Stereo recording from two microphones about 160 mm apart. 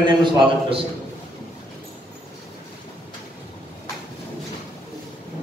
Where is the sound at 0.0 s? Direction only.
30° right (ahead or behind).